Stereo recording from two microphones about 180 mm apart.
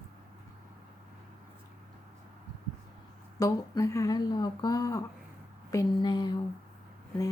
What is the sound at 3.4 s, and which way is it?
A woman's voice, 20° left (ahead or behind).